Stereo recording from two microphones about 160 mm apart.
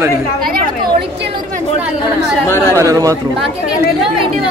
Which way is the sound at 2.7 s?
20° right (ahead or behind).